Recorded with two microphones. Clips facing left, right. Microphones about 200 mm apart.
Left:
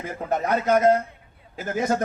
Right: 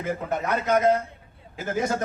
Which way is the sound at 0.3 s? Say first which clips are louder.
Left 5 dB; 45° left (ahead or behind).